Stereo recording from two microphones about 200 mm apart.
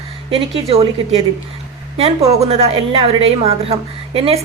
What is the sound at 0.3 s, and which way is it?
Speech, 25° right (ahead or behind).